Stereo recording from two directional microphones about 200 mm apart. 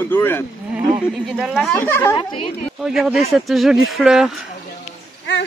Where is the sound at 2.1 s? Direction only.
25° left (ahead or behind).